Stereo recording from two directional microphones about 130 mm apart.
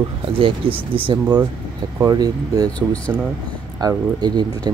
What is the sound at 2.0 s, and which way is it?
Speech, 30° right (ahead or behind).